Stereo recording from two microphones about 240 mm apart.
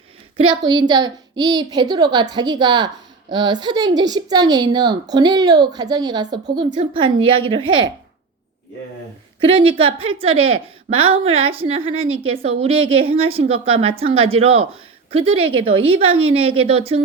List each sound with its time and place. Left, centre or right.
0.3 s a woman's voice: centre
9.4 s a woman's voice: right